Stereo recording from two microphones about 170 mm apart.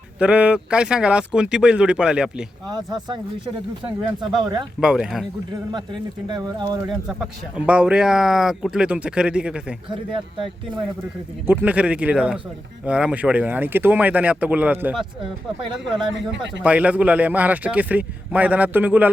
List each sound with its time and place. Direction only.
0.2 s speech: 5° right (ahead or behind)
2.6 s speech: 25° right (ahead or behind)
4.8 s speech: 5° right (ahead or behind)
5.7 s speech: 25° right (ahead or behind)
7.1 s speech: 5° right (ahead or behind)
10.1 s speech: 30° right (ahead or behind)
11.4 s a man's voice: 10° right (ahead or behind)
16.1 s speech: 90° right
16.6 s a man's voice: 10° right (ahead or behind)